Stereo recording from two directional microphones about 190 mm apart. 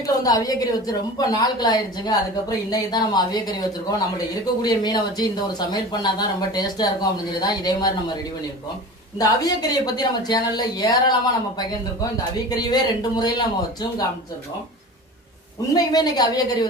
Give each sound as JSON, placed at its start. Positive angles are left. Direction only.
{"t": 0.0, "sound": "a woman's voice", "side_deg": 20}
{"t": 9.1, "sound": "a woman's voice", "side_deg": 20}
{"t": 12.1, "sound": "a woman's voice", "side_deg": 20}
{"t": 15.7, "sound": "a woman's voice", "side_deg": 20}